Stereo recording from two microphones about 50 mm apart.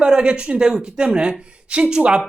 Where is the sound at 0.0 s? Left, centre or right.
Centre.